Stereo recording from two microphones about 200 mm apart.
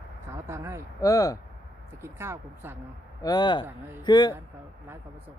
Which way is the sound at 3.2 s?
20° left (ahead or behind).